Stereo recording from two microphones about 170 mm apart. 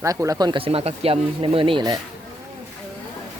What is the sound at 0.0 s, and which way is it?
Speech, 20° right (ahead or behind).